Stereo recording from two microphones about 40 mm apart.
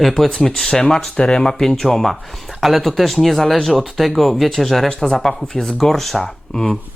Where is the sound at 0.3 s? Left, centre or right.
Centre.